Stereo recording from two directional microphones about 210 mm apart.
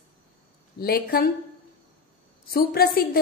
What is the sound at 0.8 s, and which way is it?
Speech, 45° left (ahead or behind).